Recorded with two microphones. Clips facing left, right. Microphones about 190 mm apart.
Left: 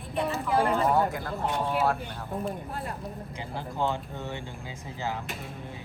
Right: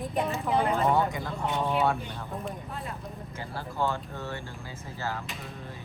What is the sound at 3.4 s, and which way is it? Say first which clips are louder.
Speech: even; 15° left (ahead or behind).